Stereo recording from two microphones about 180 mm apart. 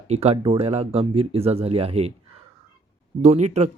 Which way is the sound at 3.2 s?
40° right (ahead or behind).